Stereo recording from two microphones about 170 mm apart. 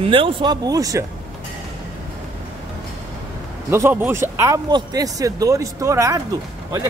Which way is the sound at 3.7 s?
15° right (ahead or behind).